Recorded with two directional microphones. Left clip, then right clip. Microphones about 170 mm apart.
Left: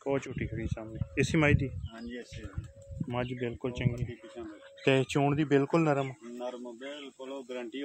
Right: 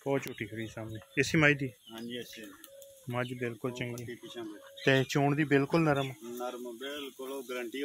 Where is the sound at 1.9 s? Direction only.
10° right (ahead or behind).